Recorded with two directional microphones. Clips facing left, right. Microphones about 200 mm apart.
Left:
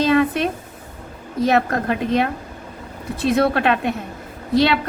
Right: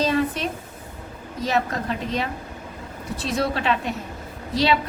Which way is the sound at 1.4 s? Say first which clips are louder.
Left 6 dB; 60° left (ahead or behind).